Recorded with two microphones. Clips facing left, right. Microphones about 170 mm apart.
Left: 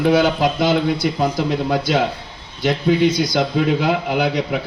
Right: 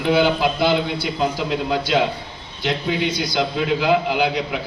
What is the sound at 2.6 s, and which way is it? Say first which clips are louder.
A man's voice: left 6 dB; 45° left (ahead or behind).